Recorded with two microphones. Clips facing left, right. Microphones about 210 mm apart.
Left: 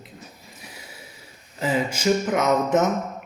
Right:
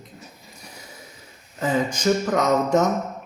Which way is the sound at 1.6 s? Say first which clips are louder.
Right 1 dB; 10° left (ahead or behind).